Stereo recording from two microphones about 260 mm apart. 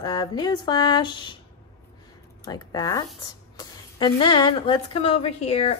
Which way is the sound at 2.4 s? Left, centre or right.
Centre.